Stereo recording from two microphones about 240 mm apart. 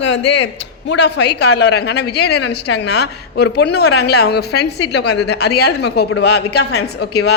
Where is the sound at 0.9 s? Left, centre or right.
Left.